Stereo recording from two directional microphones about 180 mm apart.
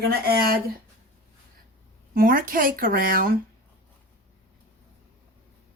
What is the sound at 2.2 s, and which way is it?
Speech, 50° right (ahead or behind).